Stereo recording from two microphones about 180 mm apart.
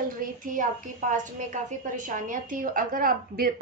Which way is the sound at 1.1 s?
45° right (ahead or behind).